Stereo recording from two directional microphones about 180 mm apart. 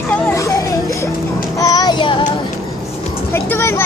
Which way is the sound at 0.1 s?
15° left (ahead or behind).